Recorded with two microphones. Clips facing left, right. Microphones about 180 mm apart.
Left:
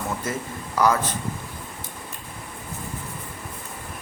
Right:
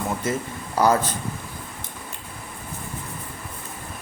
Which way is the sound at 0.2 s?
25° right (ahead or behind).